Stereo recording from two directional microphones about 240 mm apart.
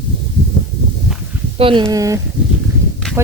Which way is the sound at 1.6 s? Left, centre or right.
Right.